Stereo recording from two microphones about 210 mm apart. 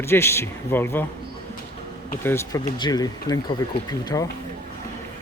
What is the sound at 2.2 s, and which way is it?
Speech, 15° left (ahead or behind).